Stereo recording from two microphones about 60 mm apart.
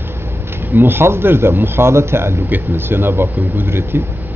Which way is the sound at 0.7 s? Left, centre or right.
Right.